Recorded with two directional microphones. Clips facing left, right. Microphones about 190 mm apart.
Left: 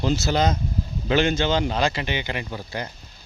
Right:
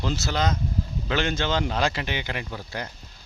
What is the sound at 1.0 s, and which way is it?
Speech, 10° left (ahead or behind).